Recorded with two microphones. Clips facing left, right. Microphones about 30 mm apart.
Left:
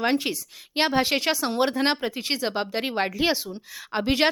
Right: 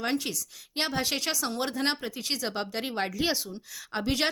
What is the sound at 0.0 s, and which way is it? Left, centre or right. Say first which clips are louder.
Speech: left 6 dB; left.